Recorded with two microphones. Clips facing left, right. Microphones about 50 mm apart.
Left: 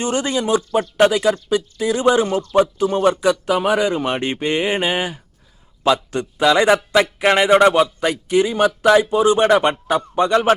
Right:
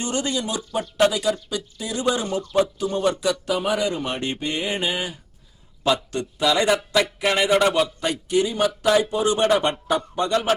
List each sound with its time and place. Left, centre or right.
0.0 s speech: left